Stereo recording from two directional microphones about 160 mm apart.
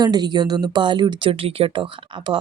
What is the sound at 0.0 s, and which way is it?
Speech, 25° right (ahead or behind).